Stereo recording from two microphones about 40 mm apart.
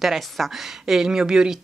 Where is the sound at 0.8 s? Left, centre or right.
Centre.